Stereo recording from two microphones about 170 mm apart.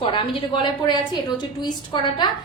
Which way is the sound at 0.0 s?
30° left (ahead or behind).